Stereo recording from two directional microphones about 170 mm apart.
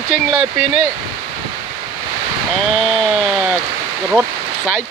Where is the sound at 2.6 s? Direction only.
5° left (ahead or behind).